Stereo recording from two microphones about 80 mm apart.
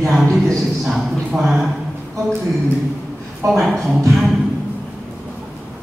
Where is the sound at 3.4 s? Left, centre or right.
Centre.